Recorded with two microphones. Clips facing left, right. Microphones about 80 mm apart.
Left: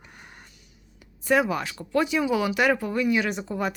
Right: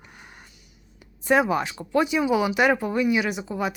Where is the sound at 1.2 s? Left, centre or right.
Right; by 3.7 s centre.